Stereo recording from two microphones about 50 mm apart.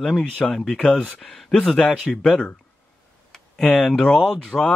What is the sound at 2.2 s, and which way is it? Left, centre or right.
Speech, centre.